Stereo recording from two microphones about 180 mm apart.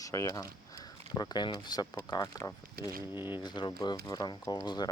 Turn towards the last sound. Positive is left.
turn(degrees=25)  # may be behind; listen again after turning